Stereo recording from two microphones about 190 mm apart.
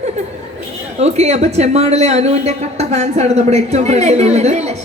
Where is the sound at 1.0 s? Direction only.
35° right (ahead or behind).